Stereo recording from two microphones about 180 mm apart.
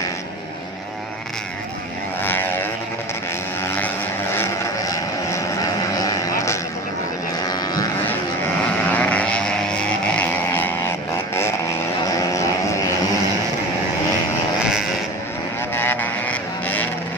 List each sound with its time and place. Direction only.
2.2 s vehicle: 10° left (ahead or behind)
3.3 s a sound: 10° left (ahead or behind)
5.9 s vehicle: 20° left (ahead or behind)
8.8 s vehicle: 10° left (ahead or behind)
12.1 s vehicle: 15° left (ahead or behind)
15.7 s a sound: 10° left (ahead or behind)